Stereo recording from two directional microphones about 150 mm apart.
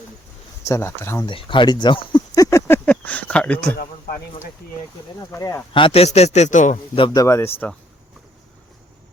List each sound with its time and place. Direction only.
0.6 s speech: 20° left (ahead or behind)
1.3 s speech: 35° left (ahead or behind); by 3.8 s 10° left (ahead or behind)
5.3 s speech: 20° left (ahead or behind)
5.7 s a man's voice: 40° left (ahead or behind); by 6.7 s 55° left (ahead or behind)
6.9 s speech: 35° left (ahead or behind)
7.2 s speech: 15° left (ahead or behind)